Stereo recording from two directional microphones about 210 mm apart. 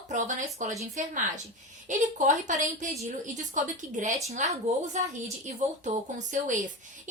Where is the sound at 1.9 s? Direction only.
35° right (ahead or behind).